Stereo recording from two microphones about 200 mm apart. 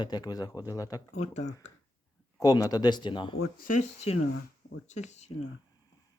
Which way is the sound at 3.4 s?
45° left (ahead or behind).